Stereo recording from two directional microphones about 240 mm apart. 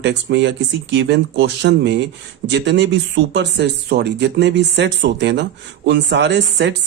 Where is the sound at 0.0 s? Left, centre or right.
Right.